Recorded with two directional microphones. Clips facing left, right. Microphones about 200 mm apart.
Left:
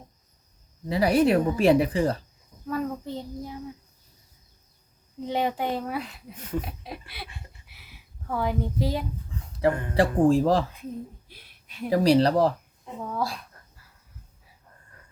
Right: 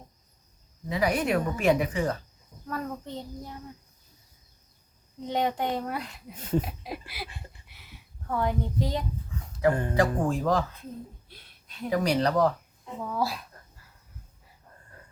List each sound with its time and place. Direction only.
0.9 s a woman's voice: 35° left (ahead or behind)
2.6 s a child's voice: 5° left (ahead or behind)
5.3 s a child's voice: 5° left (ahead or behind)
6.3 s speech: 30° right (ahead or behind)
6.7 s speech: centre (ahead or behind)
9.9 s a woman's voice: 30° left (ahead or behind)
11.3 s a sound: 10° left (ahead or behind)
11.9 s a woman's voice: 35° left (ahead or behind)
13.0 s a child's voice: 5° right (ahead or behind)